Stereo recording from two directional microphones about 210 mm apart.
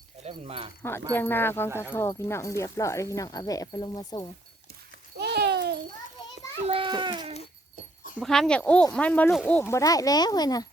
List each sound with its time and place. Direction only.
0.2 s speech: 30° right (ahead or behind)
0.8 s speech: 10° left (ahead or behind)
5.1 s a sound: 50° right (ahead or behind)
6.7 s a child's voice: 25° right (ahead or behind)
8.2 s speech: centre (ahead or behind); by 10.7 s 20° left (ahead or behind)